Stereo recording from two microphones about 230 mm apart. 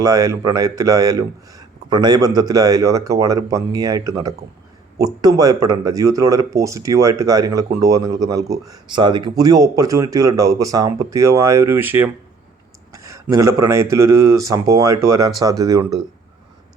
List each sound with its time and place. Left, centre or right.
0.0 s speech: centre
12.9 s a sound: centre
13.9 s speech: centre